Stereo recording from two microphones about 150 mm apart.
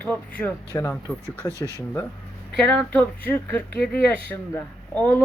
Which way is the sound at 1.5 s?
20° right (ahead or behind).